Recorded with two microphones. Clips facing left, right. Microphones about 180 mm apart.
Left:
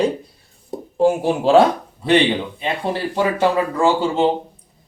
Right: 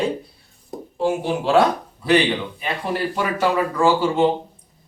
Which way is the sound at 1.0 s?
45° left (ahead or behind).